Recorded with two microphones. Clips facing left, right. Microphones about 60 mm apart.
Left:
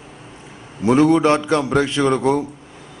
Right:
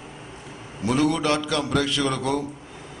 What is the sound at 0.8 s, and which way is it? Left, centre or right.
A man's voice, left.